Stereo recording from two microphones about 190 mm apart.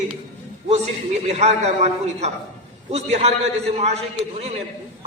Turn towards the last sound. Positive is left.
turn(degrees=-35)  # may be behind; listen again after turning